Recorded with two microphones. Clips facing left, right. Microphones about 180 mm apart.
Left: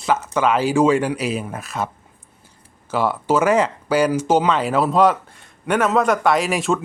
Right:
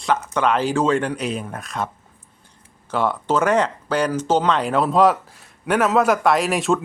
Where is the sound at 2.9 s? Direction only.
5° left (ahead or behind).